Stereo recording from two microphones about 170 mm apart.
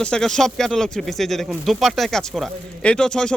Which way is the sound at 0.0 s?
5° left (ahead or behind).